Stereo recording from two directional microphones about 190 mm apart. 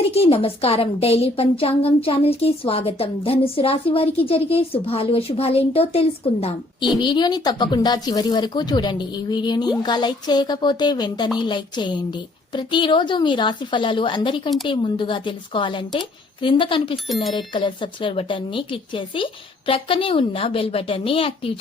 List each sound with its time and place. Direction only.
0.1 s a woman's voice: 30° left (ahead or behind)